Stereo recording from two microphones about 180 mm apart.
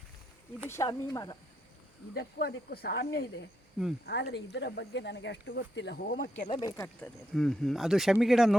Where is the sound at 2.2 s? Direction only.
60° left (ahead or behind).